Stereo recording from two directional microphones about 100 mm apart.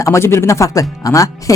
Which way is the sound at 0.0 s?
25° left (ahead or behind).